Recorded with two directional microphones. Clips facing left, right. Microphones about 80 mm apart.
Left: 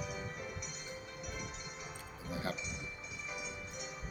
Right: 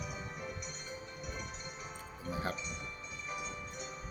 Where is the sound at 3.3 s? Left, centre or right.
Centre.